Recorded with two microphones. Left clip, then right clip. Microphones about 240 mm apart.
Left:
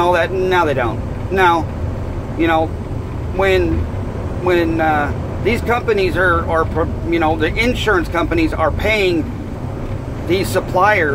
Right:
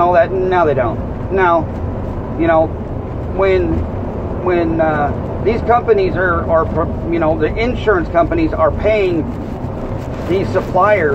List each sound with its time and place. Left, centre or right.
0.0 s speech: left
3.3 s speech: left
10.3 s speech: left